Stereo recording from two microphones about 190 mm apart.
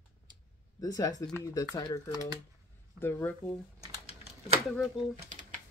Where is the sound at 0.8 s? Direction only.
20° left (ahead or behind).